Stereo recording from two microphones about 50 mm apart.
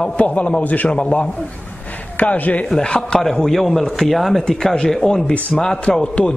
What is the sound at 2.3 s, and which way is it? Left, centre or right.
Speech, left.